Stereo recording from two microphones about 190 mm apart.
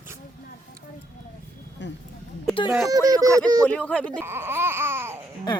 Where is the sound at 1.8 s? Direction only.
70° left (ahead or behind).